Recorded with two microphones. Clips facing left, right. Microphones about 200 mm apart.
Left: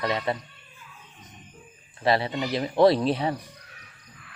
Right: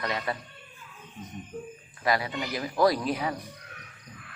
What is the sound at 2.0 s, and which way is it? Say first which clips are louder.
Speech: left 4 dB; 30° left (ahead or behind).